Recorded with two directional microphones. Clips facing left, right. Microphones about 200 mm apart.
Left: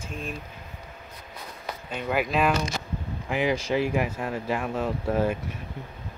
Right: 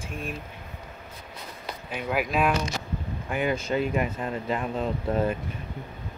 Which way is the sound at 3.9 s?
5° left (ahead or behind).